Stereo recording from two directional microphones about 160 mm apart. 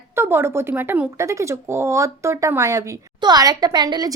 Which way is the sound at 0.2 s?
15° right (ahead or behind).